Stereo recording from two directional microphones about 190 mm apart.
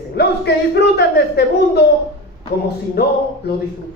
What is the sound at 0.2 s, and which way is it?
A woman's voice, 60° left (ahead or behind).